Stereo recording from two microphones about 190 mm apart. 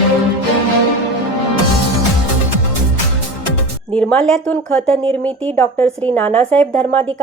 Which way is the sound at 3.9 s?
5° left (ahead or behind).